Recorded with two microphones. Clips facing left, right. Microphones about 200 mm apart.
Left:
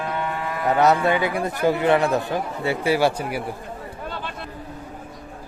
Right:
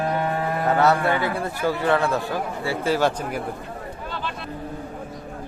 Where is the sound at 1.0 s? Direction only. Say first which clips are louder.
Left 2 dB; 15° left (ahead or behind).